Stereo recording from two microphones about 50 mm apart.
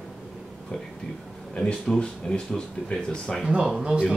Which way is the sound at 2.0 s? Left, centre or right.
Centre.